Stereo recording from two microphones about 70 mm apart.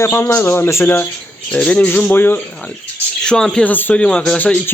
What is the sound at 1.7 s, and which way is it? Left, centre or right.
Speech, left.